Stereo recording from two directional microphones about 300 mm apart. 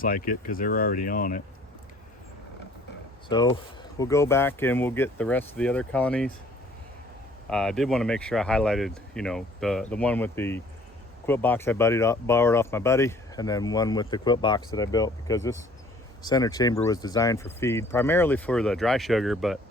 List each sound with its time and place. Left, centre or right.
0.0 s speech: left
3.2 s speech: centre
7.5 s speech: centre